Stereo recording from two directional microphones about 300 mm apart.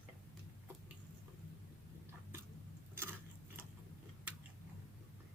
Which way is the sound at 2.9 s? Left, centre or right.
Centre.